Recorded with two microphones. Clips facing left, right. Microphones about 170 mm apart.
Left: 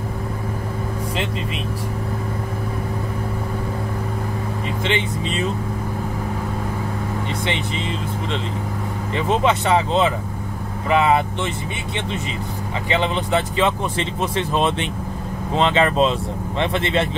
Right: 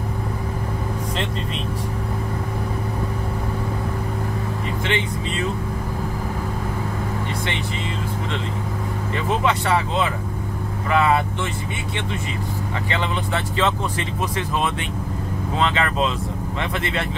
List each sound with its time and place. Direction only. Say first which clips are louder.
4.8 s vehicle: left 3 dB; 20° left (ahead or behind)
9.1 s vehicle: left 3 dB; 20° left (ahead or behind)
10.9 s speech: left 2 dB; 20° left (ahead or behind)
12.9 s speech: left 6 dB; 20° left (ahead or behind)